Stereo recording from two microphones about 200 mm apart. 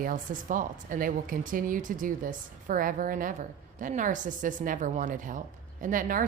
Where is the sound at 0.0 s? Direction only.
40° right (ahead or behind).